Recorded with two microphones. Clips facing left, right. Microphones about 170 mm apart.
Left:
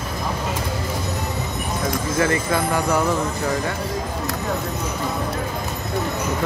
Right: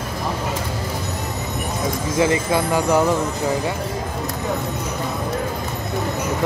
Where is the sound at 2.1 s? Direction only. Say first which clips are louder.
Right 3 dB; 15° right (ahead or behind).